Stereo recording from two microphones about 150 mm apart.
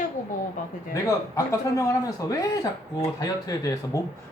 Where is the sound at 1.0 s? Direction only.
20° left (ahead or behind).